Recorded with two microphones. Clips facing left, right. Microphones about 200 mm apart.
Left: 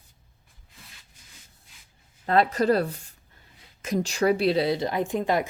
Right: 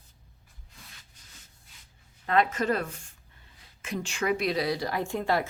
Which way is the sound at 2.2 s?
35° left (ahead or behind).